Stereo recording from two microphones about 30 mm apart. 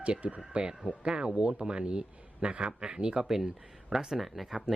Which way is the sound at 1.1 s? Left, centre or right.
Right.